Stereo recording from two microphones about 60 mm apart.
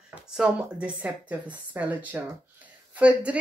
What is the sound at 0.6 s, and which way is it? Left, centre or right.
Speech, right.